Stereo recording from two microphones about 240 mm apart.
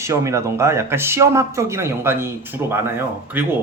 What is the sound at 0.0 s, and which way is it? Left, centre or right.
A man's voice, centre.